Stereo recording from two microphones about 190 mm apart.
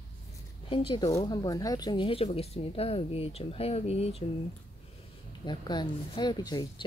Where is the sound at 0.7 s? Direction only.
25° left (ahead or behind).